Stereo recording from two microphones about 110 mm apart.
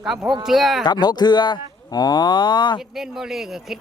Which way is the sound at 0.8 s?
40° left (ahead or behind).